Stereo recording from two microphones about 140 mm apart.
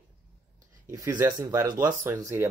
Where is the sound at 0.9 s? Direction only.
20° right (ahead or behind).